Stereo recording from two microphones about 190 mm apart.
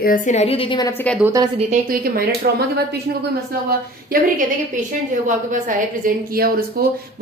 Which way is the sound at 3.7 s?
50° right (ahead or behind).